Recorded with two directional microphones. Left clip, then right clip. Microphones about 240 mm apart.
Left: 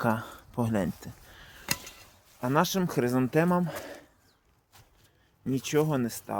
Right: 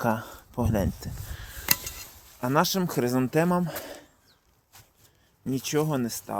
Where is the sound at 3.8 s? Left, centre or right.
Centre.